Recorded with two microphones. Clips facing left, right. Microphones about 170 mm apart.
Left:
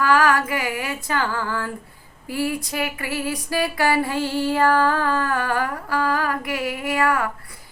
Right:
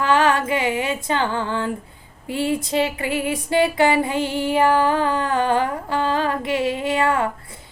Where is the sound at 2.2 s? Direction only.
25° right (ahead or behind).